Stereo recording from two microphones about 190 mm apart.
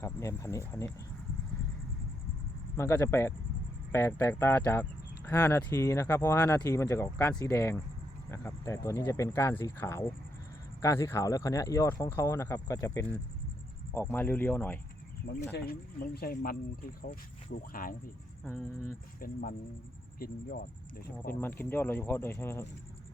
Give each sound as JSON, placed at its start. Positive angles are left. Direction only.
{"t": 0.0, "sound": "speech", "side_deg": 15}
{"t": 2.7, "sound": "speech", "side_deg": 15}
{"t": 15.5, "sound": "speech", "side_deg": 50}
{"t": 18.4, "sound": "speech", "side_deg": 10}
{"t": 19.2, "sound": "speech", "side_deg": 50}
{"t": 21.4, "sound": "speech", "side_deg": 10}